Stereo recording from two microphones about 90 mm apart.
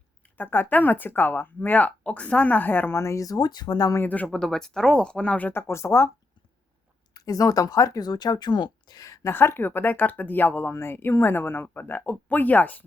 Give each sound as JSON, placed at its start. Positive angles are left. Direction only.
{"t": 0.2, "sound": "a woman's voice", "side_deg": 20}
{"t": 4.0, "sound": "speech", "side_deg": 15}
{"t": 7.1, "sound": "speech", "side_deg": 40}
{"t": 9.2, "sound": "speech", "side_deg": 25}